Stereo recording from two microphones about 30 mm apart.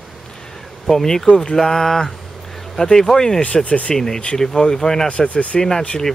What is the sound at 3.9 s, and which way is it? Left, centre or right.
Speech, centre.